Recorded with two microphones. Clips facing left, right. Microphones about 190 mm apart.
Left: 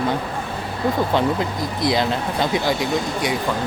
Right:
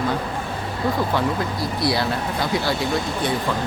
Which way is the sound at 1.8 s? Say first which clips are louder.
Left 3 dB; 20° left (ahead or behind).